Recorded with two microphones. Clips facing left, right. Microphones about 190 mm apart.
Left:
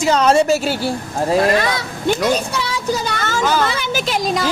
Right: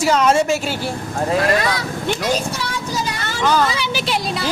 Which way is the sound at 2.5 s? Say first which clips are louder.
Left 4 dB; 65° left (ahead or behind).